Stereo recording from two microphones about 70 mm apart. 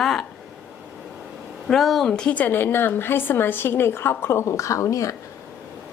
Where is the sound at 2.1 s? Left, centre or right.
Centre; by 5.1 s left.